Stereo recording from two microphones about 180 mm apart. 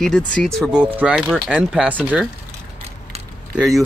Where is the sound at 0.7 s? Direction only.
5° right (ahead or behind).